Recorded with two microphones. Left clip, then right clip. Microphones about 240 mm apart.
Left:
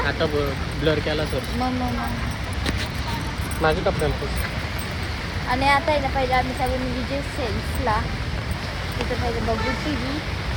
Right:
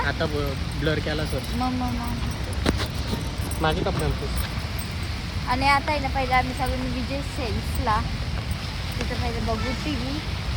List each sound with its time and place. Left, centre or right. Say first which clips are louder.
0.9 s speech: left 4 dB; centre
3.6 s speech: left 4 dB; centre
5.5 s a child's voice: left 2 dB; centre
7.9 s a child's voice: left 1 dB; centre